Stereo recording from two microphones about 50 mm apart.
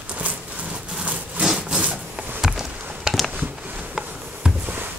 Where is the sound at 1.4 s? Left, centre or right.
Right.